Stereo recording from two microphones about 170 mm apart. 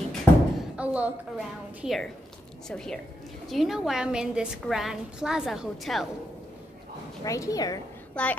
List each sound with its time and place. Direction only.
0.2 s a sound: 5° right (ahead or behind)
1.8 s a woman's voice: centre (ahead or behind)
7.2 s a woman's voice: 20° left (ahead or behind)
8.1 s a woman's voice: 5° left (ahead or behind)